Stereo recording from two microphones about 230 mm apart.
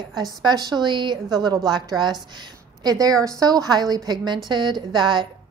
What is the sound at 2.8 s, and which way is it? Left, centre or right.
A woman's voice, centre.